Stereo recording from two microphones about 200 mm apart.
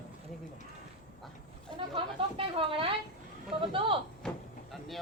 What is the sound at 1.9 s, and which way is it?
Speech, 25° right (ahead or behind).